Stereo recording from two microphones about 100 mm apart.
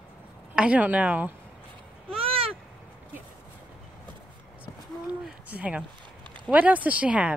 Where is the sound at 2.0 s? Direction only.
70° right (ahead or behind).